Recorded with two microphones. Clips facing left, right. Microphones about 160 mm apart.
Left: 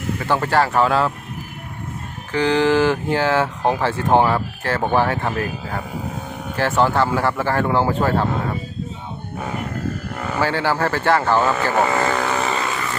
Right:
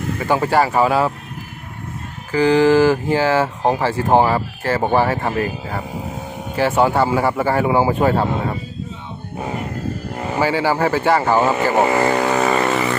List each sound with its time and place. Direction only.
0.2 s speech: 5° right (ahead or behind)
2.3 s speech: 5° right (ahead or behind)
10.2 s a sound: 20° right (ahead or behind)
10.4 s speech: 10° right (ahead or behind); by 12.5 s 40° right (ahead or behind)